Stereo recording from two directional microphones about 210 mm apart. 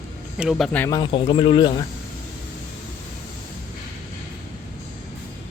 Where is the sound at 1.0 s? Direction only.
25° left (ahead or behind).